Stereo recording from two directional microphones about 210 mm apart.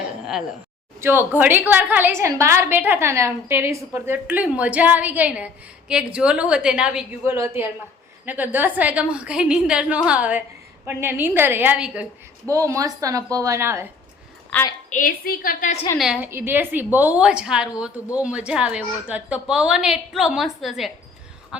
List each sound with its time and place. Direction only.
1.0 s a woman's voice: 10° right (ahead or behind)
14.5 s a woman's voice: 15° left (ahead or behind)
14.8 s a woman's voice: 40° left (ahead or behind)
16.0 s a woman's voice: 5° right (ahead or behind)